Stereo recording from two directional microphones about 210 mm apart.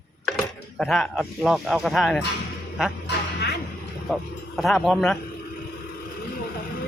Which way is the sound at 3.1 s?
50° left (ahead or behind).